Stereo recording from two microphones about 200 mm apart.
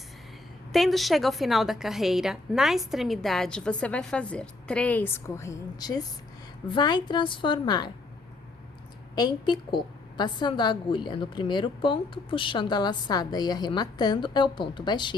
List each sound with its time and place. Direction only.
0.7 s a woman's voice: centre (ahead or behind); by 7.9 s 20° left (ahead or behind)
9.1 s a woman's voice: 20° left (ahead or behind)